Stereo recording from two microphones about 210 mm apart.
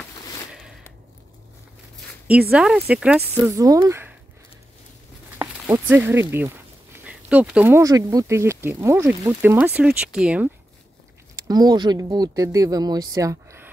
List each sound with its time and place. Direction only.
0.5 s a sound: centre (ahead or behind)
2.5 s speech: 5° right (ahead or behind)
3.5 s speech: 15° right (ahead or behind)
5.4 s speech: 10° right (ahead or behind)
11.3 s speech: 20° right (ahead or behind)